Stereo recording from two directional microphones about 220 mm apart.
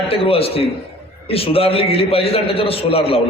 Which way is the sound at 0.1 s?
25° left (ahead or behind).